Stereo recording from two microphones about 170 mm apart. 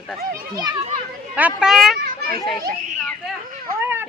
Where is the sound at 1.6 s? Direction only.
Centre (ahead or behind).